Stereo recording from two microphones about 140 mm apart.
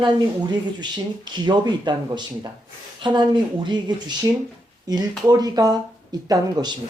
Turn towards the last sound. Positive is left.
turn(degrees=-30)  # may be behind; listen again after turning